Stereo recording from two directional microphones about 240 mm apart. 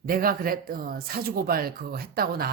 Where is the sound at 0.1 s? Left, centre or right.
Right.